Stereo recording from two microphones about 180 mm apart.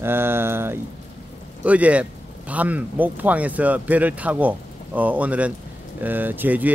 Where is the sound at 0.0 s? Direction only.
10° right (ahead or behind).